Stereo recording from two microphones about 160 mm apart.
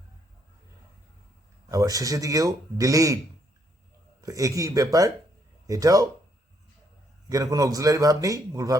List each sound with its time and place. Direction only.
1.7 s a man's voice: 20° right (ahead or behind)
4.2 s a man's voice: 20° right (ahead or behind)
7.3 s a man's voice: 20° right (ahead or behind)